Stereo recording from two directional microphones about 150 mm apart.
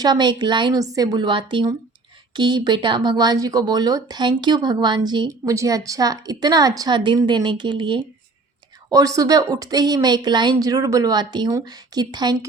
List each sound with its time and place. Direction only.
0.0 s speech: 30° right (ahead or behind)